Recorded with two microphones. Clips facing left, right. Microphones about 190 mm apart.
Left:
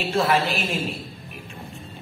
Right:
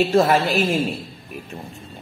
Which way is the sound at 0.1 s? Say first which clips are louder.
Right 5 dB; 45° right (ahead or behind).